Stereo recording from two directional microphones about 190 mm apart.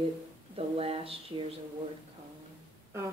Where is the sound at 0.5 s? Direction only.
30° right (ahead or behind).